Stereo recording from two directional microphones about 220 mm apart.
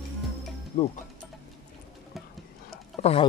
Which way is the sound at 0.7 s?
35° left (ahead or behind).